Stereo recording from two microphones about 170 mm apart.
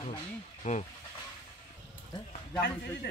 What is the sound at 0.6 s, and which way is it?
Speech, 50° left (ahead or behind).